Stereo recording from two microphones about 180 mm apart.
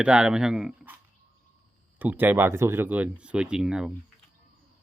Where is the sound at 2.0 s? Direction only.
10° right (ahead or behind).